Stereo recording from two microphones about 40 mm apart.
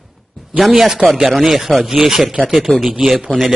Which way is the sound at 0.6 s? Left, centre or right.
Centre.